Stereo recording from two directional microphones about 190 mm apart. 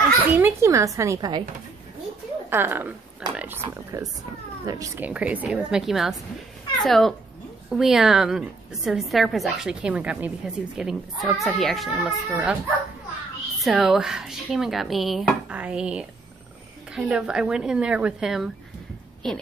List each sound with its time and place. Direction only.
0.4 s a woman's voice: 15° right (ahead or behind)
2.5 s a woman's voice: 10° right (ahead or behind)
3.3 s a sound: 10° right (ahead or behind)
3.6 s a woman's voice: 20° right (ahead or behind)
13.6 s a woman's voice: centre (ahead or behind)